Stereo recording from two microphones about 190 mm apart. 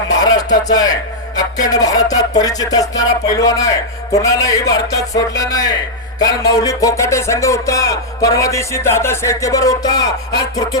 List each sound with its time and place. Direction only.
0.2 s music: 20° left (ahead or behind)